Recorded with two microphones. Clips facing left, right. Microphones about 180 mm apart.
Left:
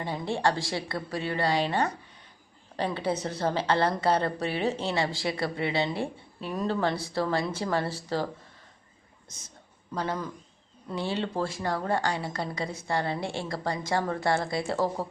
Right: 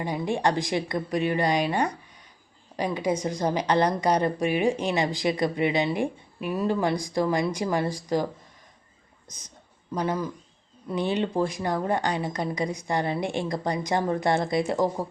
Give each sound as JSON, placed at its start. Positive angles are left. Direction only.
{"t": 0.0, "sound": "a woman's voice", "side_deg": -15}
{"t": 9.9, "sound": "a woman's voice", "side_deg": -15}